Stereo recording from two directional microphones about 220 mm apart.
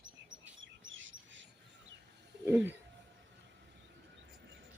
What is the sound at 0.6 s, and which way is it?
Bird, 60° right (ahead or behind).